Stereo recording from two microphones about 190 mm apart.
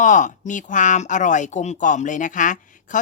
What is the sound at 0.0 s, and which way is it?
Speech, 40° left (ahead or behind).